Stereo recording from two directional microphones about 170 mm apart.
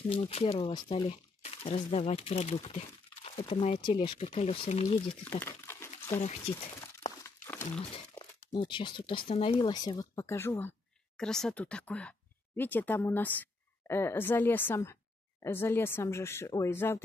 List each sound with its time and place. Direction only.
0.1 s speech: 35° left (ahead or behind)
5.2 s speech: 15° left (ahead or behind)
6.0 s speech: 40° left (ahead or behind)
7.2 s a sound: 10° left (ahead or behind)
8.1 s speech: 20° left (ahead or behind)
11.1 s speech: 5° left (ahead or behind)